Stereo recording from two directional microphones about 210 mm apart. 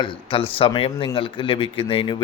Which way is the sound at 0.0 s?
25° left (ahead or behind).